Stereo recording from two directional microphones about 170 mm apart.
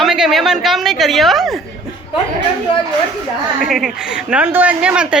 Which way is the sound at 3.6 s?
Centre (ahead or behind).